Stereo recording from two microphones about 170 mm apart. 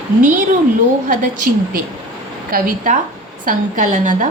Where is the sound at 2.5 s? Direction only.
50° right (ahead or behind).